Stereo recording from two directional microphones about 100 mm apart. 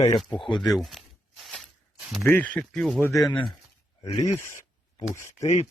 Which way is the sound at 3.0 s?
35° left (ahead or behind).